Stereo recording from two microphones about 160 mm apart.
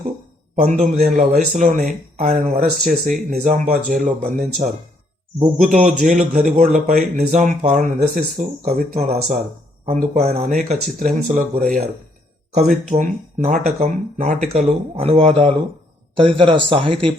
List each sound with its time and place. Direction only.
0.5 s speech: 45° right (ahead or behind)
12.9 s speech: 45° right (ahead or behind)